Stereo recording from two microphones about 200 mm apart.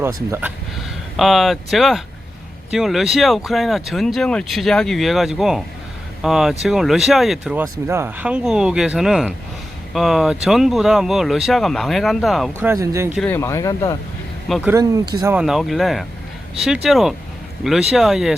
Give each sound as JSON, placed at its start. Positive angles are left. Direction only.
{"t": 0.0, "sound": "speech", "side_deg": -15}
{"t": 1.1, "sound": "speech", "side_deg": 0}
{"t": 7.6, "sound": "speech", "side_deg": -15}
{"t": 12.6, "sound": "speech", "side_deg": -15}
{"t": 13.1, "sound": "speech", "side_deg": 10}
{"t": 14.4, "sound": "speech", "side_deg": 0}
{"t": 14.7, "sound": "speech", "side_deg": -15}
{"t": 15.4, "sound": "speech", "side_deg": 0}